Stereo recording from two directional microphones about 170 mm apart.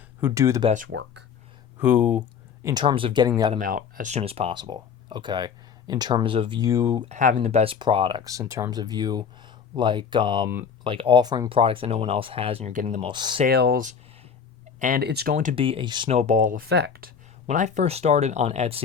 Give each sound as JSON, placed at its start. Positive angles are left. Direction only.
{"t": 0.2, "sound": "speech", "side_deg": -15}
{"t": 0.9, "sound": "speech", "side_deg": -90}
{"t": 1.8, "sound": "speech", "side_deg": -10}
{"t": 2.8, "sound": "speech", "side_deg": -30}
{"t": 3.6, "sound": "speech", "side_deg": -55}
{"t": 7.1, "sound": "speech", "side_deg": -50}
{"t": 13.1, "sound": "speech", "side_deg": -30}
{"t": 13.4, "sound": "speech", "side_deg": -65}
{"t": 14.8, "sound": "speech", "side_deg": -55}
{"t": 15.0, "sound": "speech", "side_deg": -70}
{"t": 15.5, "sound": "speech", "side_deg": -30}
{"t": 16.0, "sound": "speech", "side_deg": -40}
{"t": 16.6, "sound": "speech", "side_deg": -80}
{"t": 17.4, "sound": "speech", "side_deg": -45}